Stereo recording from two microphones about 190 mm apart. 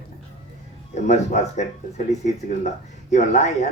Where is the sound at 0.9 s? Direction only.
40° left (ahead or behind).